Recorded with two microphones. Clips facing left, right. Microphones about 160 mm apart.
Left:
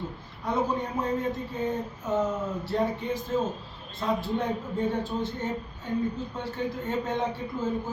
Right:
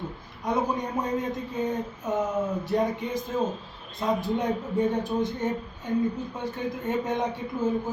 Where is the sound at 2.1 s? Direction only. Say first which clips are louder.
Right 1 dB; 15° right (ahead or behind).